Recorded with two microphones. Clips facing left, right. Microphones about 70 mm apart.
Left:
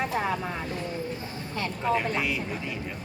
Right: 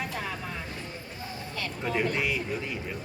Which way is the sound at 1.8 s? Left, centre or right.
Centre.